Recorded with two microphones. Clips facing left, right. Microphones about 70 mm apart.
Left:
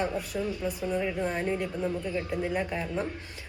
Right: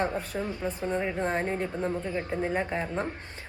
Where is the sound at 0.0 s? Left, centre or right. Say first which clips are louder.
Even; right.